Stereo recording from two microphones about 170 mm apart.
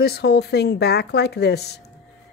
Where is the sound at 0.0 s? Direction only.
70° left (ahead or behind).